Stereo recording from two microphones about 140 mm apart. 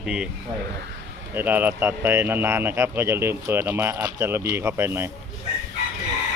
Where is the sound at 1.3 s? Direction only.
15° right (ahead or behind).